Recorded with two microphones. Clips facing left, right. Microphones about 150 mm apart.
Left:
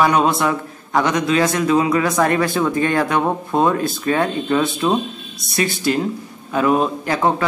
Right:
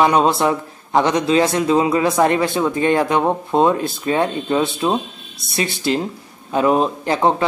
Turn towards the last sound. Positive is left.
turn(degrees=-25)  # may be behind; listen again after turning